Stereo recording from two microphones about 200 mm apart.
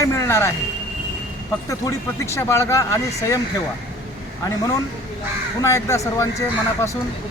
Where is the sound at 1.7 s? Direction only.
15° left (ahead or behind).